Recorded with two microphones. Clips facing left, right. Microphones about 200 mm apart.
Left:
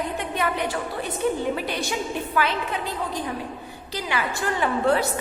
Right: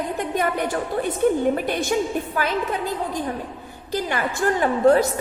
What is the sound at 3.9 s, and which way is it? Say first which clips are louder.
A woman's voice: right 4 dB; 50° right (ahead or behind).